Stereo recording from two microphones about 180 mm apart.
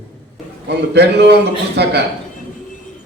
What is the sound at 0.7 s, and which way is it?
A man's voice, 65° right (ahead or behind).